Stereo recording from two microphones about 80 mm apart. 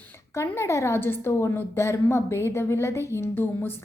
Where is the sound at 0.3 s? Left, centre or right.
Left.